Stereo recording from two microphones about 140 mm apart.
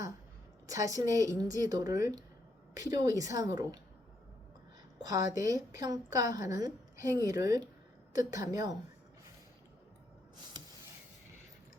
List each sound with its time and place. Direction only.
0.7 s a woman's voice: 25° right (ahead or behind)
5.0 s a woman's voice: 25° right (ahead or behind)